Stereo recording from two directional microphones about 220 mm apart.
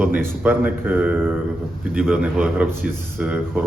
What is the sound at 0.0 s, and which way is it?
A man's voice, 5° right (ahead or behind).